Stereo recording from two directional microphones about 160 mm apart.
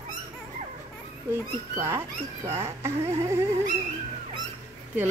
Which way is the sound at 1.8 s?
15° right (ahead or behind).